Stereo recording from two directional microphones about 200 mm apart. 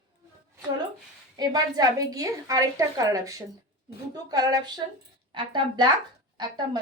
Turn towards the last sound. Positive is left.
turn(degrees=-20)  # may be behind; listen again after turning